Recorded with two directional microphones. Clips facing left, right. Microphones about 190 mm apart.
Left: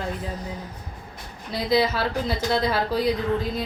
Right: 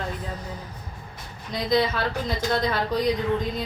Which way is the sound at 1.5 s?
5° left (ahead or behind).